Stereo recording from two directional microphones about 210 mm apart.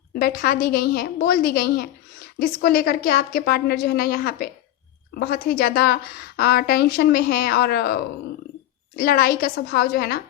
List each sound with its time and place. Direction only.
0.1 s a woman's voice: 45° left (ahead or behind)
9.0 s a woman's voice: 45° left (ahead or behind)